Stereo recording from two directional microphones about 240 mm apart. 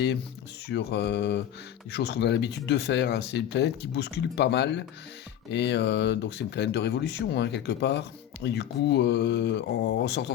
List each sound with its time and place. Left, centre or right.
0.7 s speech: left